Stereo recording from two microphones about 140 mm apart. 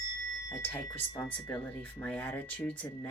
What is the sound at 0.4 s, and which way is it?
Speech, 15° left (ahead or behind).